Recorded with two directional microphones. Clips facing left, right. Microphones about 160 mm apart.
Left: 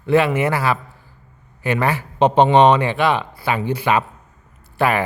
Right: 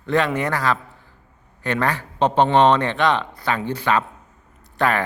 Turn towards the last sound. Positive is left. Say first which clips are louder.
# left 2 dB
turn(degrees=10)  # may be behind; listen again after turning